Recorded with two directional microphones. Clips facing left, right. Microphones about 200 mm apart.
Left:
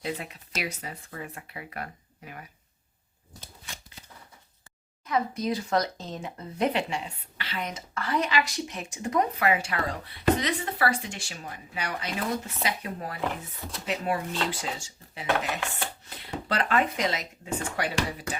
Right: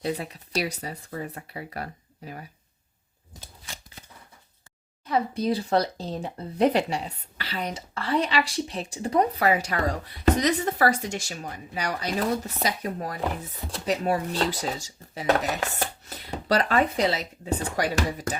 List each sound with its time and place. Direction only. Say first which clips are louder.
0.0 s speech: right 4 dB; 35° right (ahead or behind)
5.0 s speech: right 3 dB; 35° right (ahead or behind)